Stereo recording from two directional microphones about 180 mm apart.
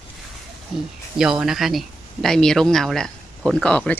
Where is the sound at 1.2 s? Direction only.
5° right (ahead or behind).